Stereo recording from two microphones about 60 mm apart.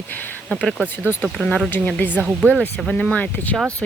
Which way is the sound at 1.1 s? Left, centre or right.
Left.